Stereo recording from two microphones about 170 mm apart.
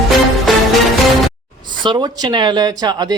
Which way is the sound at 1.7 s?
25° right (ahead or behind).